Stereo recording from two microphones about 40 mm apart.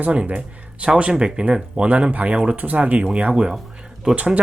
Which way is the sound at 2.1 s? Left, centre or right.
Right.